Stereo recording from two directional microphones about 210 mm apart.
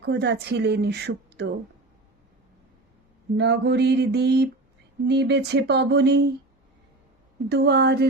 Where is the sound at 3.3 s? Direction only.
55° right (ahead or behind).